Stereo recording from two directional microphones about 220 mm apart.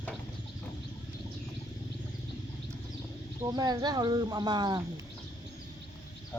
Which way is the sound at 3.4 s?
20° right (ahead or behind).